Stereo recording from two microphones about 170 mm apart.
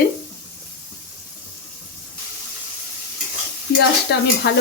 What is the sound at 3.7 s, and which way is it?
Stir, 75° left (ahead or behind).